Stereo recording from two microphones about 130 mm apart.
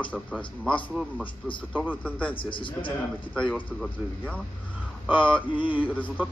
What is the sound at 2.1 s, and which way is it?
Speech, 10° left (ahead or behind).